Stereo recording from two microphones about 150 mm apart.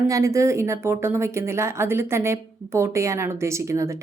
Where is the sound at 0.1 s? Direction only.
20° right (ahead or behind).